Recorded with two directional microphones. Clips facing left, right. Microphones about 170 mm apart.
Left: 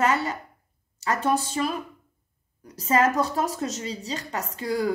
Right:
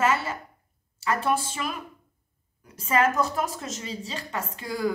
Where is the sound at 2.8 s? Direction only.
35° left (ahead or behind).